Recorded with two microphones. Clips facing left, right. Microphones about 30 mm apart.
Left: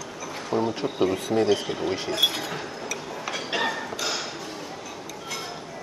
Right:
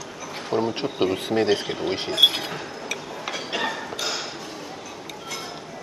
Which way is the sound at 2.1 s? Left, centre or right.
Right.